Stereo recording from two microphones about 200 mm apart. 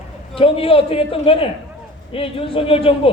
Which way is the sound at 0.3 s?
30° left (ahead or behind).